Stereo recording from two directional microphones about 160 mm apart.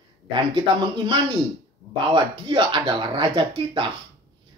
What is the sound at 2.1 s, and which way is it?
Speech, 30° right (ahead or behind).